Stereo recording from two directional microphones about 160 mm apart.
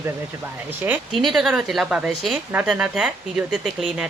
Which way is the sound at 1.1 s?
Centre (ahead or behind).